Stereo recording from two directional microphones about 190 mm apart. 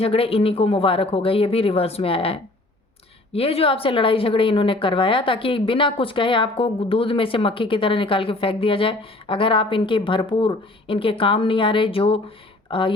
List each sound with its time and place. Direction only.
0.0 s speech: 30° left (ahead or behind)